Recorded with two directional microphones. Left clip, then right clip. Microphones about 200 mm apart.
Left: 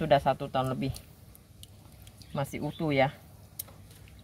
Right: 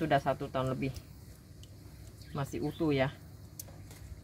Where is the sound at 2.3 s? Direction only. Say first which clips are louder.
Left 2 dB; 50° left (ahead or behind).